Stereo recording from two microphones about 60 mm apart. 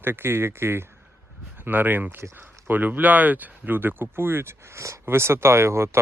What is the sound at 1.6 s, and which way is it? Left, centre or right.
Speech, right.